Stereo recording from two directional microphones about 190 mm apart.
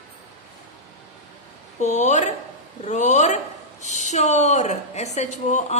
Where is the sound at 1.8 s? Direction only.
35° left (ahead or behind).